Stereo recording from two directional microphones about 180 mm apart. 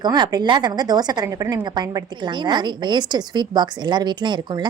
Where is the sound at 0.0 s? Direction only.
25° right (ahead or behind).